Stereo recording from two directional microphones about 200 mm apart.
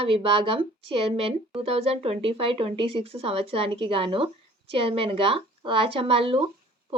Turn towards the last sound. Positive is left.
turn(degrees=-25)  # may be behind; listen again after turning